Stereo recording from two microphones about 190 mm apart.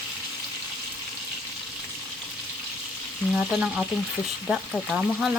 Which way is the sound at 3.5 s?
5° right (ahead or behind).